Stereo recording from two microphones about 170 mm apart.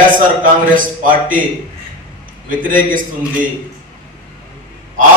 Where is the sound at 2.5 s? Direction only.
50° right (ahead or behind).